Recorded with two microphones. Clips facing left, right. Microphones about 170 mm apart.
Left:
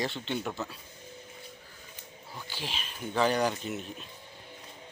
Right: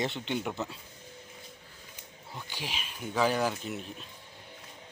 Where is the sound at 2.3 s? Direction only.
10° right (ahead or behind).